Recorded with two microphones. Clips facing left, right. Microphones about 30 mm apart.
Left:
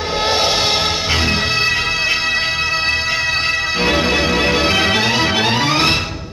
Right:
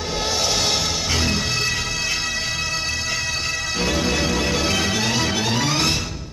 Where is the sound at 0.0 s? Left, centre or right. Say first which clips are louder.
Left 7 dB; left.